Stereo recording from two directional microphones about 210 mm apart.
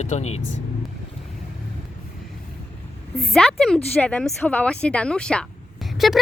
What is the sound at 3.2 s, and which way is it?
Speech, centre (ahead or behind).